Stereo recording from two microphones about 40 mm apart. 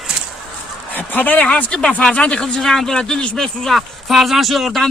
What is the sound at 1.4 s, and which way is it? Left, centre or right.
Speech, left.